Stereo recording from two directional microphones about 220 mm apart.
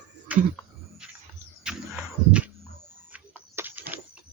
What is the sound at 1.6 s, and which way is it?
Livestock, 5° right (ahead or behind).